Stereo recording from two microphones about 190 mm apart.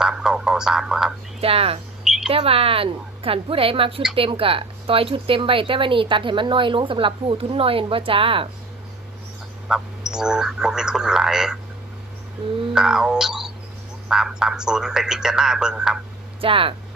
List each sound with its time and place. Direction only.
0.0 s a sound: centre (ahead or behind)
1.4 s speech: 30° right (ahead or behind)
9.7 s speech: 5° right (ahead or behind)
12.7 s speech: 5° right (ahead or behind)
16.3 s speech: 30° right (ahead or behind)